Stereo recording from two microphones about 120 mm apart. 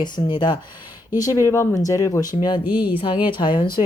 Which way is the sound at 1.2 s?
25° left (ahead or behind).